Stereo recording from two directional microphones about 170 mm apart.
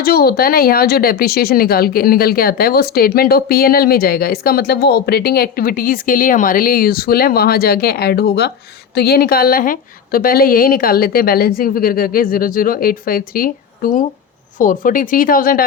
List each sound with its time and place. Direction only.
0.0 s a woman's voice: 65° left (ahead or behind)